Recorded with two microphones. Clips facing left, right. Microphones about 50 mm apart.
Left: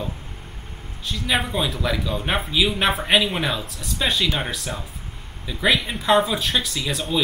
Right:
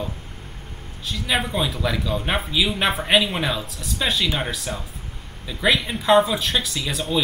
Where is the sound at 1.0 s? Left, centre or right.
Centre.